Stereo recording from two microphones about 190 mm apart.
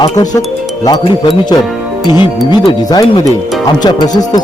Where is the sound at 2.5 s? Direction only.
20° left (ahead or behind).